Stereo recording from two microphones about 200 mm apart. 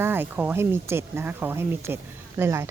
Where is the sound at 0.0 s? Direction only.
10° right (ahead or behind).